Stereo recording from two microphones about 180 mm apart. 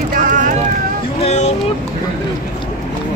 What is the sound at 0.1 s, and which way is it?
Vehicle, 45° right (ahead or behind).